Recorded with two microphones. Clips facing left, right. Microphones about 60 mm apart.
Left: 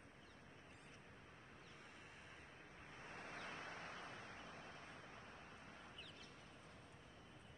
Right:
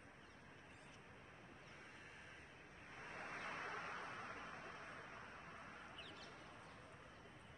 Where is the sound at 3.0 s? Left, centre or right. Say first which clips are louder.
Right 3 dB; right.